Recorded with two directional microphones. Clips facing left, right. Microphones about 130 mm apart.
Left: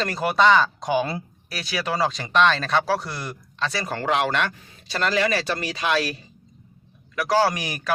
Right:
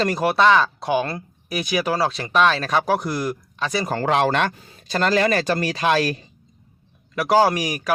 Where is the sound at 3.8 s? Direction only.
40° right (ahead or behind).